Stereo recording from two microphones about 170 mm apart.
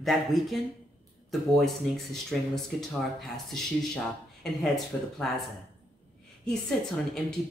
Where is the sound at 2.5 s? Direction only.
Centre (ahead or behind).